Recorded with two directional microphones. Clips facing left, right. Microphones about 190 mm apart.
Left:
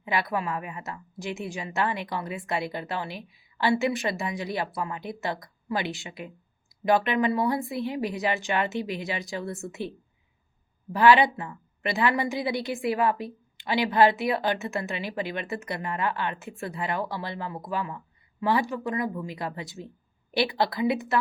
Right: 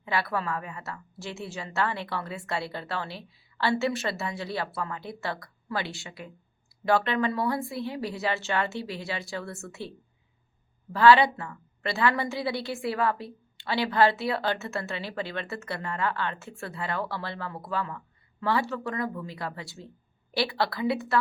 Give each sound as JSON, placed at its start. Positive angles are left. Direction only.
{"t": 0.0, "sound": "a woman's voice", "side_deg": 15}
{"t": 10.9, "sound": "a woman's voice", "side_deg": 15}